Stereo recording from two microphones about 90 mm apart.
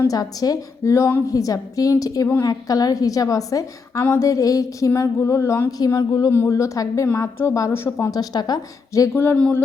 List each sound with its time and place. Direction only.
0.1 s a woman's voice: 45° left (ahead or behind)
5.8 s a woman's voice: 50° left (ahead or behind)
6.3 s a woman's voice: 30° left (ahead or behind)
8.2 s a woman's voice: 50° left (ahead or behind)
9.1 s speech: 25° left (ahead or behind)